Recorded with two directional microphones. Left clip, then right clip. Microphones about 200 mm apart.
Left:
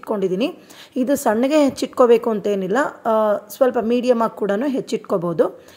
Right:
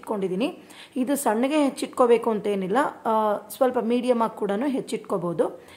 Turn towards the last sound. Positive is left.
turn(degrees=20)  # may be behind; listen again after turning